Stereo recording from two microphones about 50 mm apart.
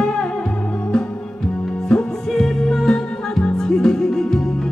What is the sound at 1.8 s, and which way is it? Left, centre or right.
Music, centre.